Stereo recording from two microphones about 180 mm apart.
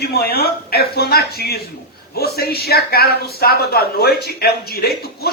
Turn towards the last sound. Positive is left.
turn(degrees=60)  # may be behind; listen again after turning